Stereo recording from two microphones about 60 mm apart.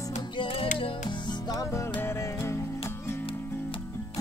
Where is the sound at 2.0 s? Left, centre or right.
Left.